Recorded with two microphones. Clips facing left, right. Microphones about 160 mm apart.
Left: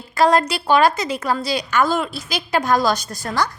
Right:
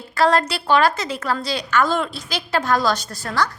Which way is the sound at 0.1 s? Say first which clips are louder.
Left 2 dB; 15° left (ahead or behind).